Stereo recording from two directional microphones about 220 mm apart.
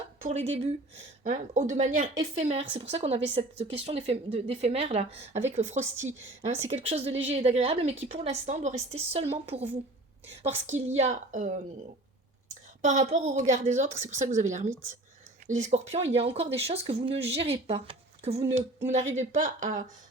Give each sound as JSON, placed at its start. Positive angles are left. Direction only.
{"t": 0.2, "sound": "a woman's voice", "side_deg": -30}
{"t": 5.8, "sound": "a woman's voice", "side_deg": -10}
{"t": 6.4, "sound": "a woman's voice", "side_deg": -30}
{"t": 10.7, "sound": "a woman's voice", "side_deg": -30}
{"t": 12.8, "sound": "a woman's voice", "side_deg": -35}